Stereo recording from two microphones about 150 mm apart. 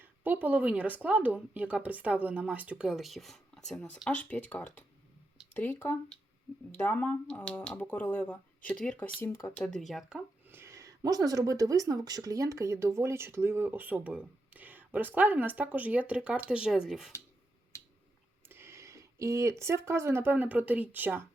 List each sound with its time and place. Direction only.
0.0 s speech: 10° right (ahead or behind); by 9.6 s 15° left (ahead or behind)
9.6 s speech: centre (ahead or behind)
10.6 s speech: 20° right (ahead or behind); by 17.1 s 5° right (ahead or behind)
18.4 s speech: 15° right (ahead or behind)